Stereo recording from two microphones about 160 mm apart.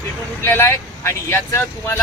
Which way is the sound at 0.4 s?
15° left (ahead or behind).